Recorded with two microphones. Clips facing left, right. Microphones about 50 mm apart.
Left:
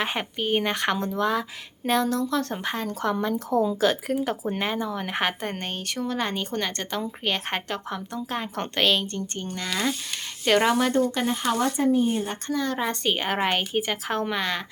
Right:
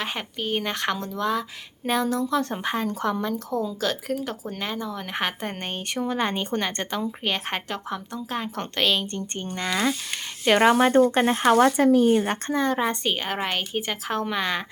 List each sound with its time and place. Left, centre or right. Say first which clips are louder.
0.0 s speech: left 2 dB; centre
1.9 s speech: even; centre
3.6 s speech: left 5 dB; centre
5.5 s a woman's voice: right 1 dB; centre
9.2 s speech: even; right
9.5 s a woman's voice: right 3 dB; centre
10.9 s speech: right 5 dB; right
11.5 s speech: right 5 dB; right
12.5 s speech: right 1 dB; right
12.7 s a woman's voice: right 3 dB; centre
13.1 s speech: left 2 dB; centre